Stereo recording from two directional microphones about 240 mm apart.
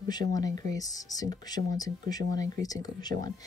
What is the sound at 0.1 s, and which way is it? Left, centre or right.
Speech, centre.